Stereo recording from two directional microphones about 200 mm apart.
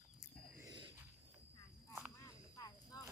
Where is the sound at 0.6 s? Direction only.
20° right (ahead or behind).